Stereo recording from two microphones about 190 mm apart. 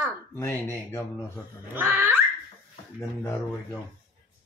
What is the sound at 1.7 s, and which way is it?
Dog, 10° right (ahead or behind).